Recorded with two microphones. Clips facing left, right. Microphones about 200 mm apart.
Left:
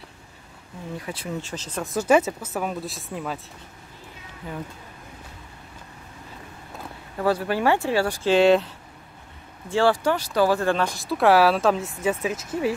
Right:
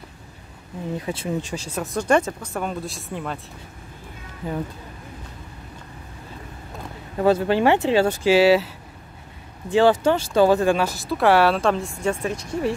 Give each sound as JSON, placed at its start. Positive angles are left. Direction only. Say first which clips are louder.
{"t": 0.9, "sound": "speech", "louder": "right 5 dB", "side_deg": -25}
{"t": 1.5, "sound": "speech", "louder": "right 3 dB", "side_deg": -10}
{"t": 2.0, "sound": "speech", "louder": "left 1 dB", "side_deg": 5}
{"t": 7.2, "sound": "speech", "louder": "right 5 dB", "side_deg": -20}
{"t": 8.3, "sound": "speech", "louder": "right 1 dB", "side_deg": -5}
{"t": 9.7, "sound": "speech", "louder": "right 4 dB", "side_deg": -20}